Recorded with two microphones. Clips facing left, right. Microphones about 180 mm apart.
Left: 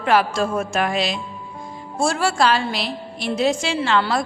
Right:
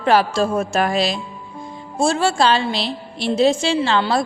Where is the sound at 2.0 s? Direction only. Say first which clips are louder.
Right 2 dB; 25° right (ahead or behind).